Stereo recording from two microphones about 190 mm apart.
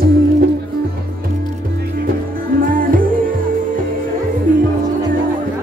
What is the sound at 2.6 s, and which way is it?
Music, 45° right (ahead or behind).